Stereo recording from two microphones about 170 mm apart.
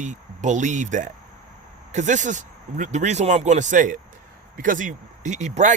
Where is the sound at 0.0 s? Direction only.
45° right (ahead or behind).